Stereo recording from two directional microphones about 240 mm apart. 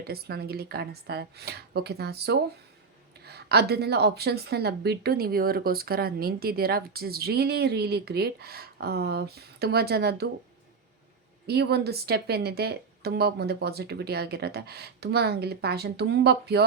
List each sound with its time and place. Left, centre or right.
0.0 s speech: right
11.4 s speech: right